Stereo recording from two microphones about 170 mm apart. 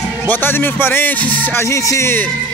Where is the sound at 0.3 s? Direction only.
10° left (ahead or behind).